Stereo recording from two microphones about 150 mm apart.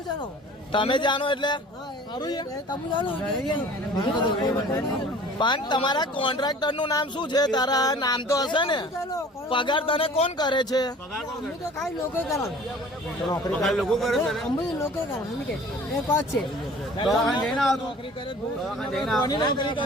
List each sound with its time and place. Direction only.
0.7 s a man's voice: 35° left (ahead or behind)
12.1 s speech: 20° left (ahead or behind)
13.5 s a man's voice: centre (ahead or behind)
16.0 s speech: 15° left (ahead or behind)
17.1 s a man's voice: centre (ahead or behind)
18.8 s a man's voice: centre (ahead or behind)
19.2 s a man's voice: 30° left (ahead or behind)